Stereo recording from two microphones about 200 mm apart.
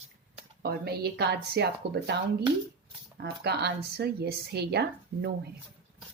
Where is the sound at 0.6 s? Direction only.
50° right (ahead or behind).